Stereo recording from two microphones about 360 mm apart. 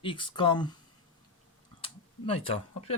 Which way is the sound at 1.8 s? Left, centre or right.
Centre.